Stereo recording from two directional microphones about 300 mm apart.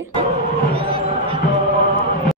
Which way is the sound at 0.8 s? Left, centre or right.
Centre.